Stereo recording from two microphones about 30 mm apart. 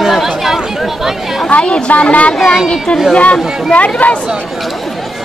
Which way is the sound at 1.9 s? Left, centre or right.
Left.